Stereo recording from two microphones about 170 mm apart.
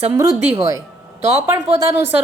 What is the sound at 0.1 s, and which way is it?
A woman's voice, 20° right (ahead or behind).